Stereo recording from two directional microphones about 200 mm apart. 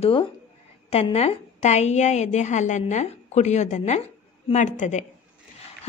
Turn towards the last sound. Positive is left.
turn(degrees=35)  # may be behind; listen again after turning